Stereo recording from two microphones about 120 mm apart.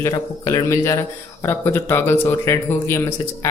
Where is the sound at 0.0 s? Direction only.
30° left (ahead or behind).